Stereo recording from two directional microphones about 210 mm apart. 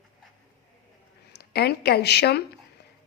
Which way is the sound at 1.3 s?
50° left (ahead or behind).